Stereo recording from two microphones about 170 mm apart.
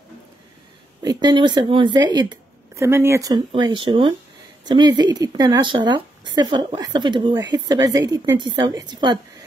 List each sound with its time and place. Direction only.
1.0 s speech: 25° right (ahead or behind)